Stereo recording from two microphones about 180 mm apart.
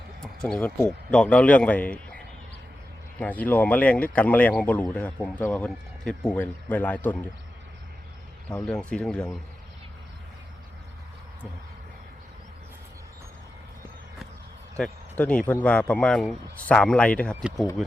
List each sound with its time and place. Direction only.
0.2 s a man's voice: 5° left (ahead or behind)
8.4 s speech: 5° left (ahead or behind)
14.8 s speech: 10° left (ahead or behind)